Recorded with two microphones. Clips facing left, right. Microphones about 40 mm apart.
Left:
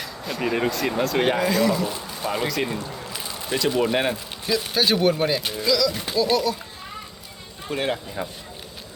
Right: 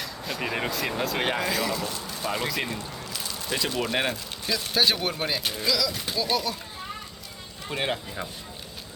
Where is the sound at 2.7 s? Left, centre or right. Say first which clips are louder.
Left 4 dB; centre.